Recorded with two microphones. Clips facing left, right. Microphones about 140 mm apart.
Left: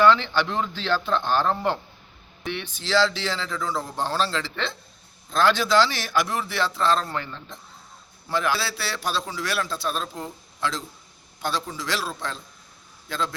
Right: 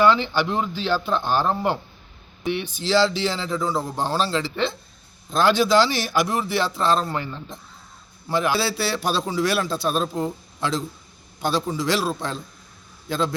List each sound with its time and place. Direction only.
0.0 s a man's voice: 10° right (ahead or behind)
10.2 s a man's voice: 20° right (ahead or behind)
11.3 s a man's voice: 10° right (ahead or behind)